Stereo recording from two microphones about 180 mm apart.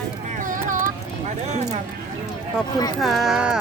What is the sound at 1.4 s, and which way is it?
Speech, 40° right (ahead or behind).